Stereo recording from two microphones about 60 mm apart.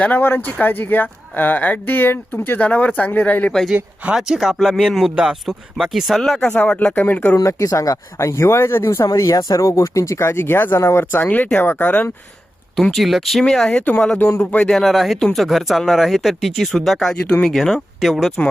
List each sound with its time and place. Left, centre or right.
0.0 s speech: left
4.1 s speech: centre
6.7 s speech: left
7.3 s speech: left
8.3 s speech: left
9.0 s speech: left
9.6 s speech: left
10.2 s speech: left
12.7 s speech: centre
13.4 s speech: centre
14.2 s speech: left
14.6 s speech: centre